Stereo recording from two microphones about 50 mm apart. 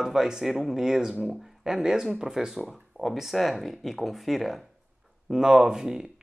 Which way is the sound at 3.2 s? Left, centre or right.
Centre.